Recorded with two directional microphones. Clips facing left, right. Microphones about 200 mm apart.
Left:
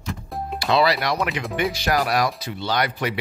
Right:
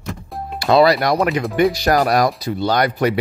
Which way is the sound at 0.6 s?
45° right (ahead or behind).